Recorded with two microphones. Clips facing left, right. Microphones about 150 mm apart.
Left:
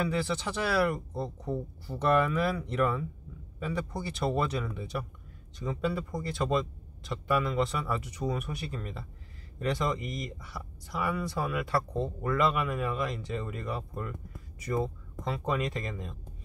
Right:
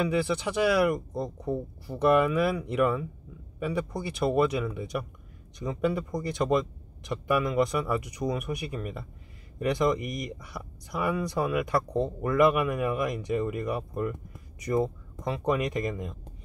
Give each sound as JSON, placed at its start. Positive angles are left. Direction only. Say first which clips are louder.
{"t": 0.1, "sound": "speech", "louder": "right 4 dB", "side_deg": -10}